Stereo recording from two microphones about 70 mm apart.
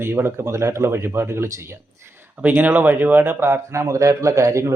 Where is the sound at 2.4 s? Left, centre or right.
Right.